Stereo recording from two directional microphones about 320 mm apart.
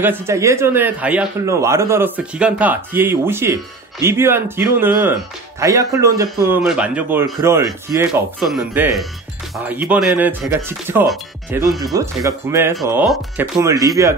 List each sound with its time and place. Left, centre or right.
0.0 s speech: centre